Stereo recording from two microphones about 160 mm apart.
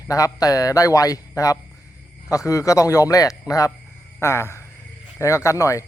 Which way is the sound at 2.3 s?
20° left (ahead or behind).